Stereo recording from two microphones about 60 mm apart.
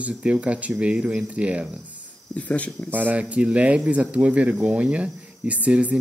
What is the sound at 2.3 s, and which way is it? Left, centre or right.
Speech, left.